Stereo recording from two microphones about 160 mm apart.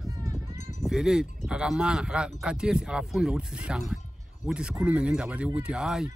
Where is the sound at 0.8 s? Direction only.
5° right (ahead or behind).